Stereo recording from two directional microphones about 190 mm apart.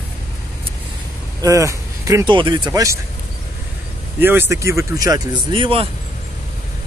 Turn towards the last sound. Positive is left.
turn(degrees=-25)  # may be behind; listen again after turning